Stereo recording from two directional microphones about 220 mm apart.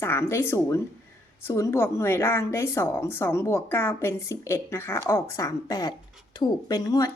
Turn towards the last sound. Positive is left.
turn(degrees=15)  # may be behind; listen again after turning